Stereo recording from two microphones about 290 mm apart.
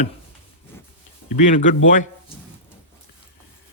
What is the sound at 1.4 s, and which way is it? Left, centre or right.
Speech, left.